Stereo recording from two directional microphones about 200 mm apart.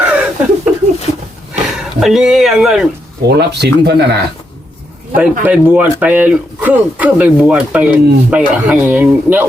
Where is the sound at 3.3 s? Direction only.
55° right (ahead or behind).